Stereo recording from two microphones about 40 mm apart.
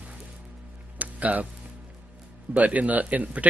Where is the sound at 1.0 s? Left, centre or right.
Right.